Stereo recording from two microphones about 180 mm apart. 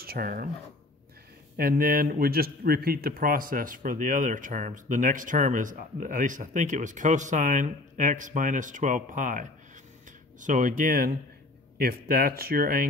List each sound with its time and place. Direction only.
0.0 s speech: 55° right (ahead or behind)
1.6 s a man's voice: 55° right (ahead or behind)